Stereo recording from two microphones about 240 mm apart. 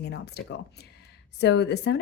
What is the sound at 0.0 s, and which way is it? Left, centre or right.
Speech, left.